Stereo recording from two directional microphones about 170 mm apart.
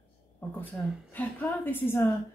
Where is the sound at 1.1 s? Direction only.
10° left (ahead or behind).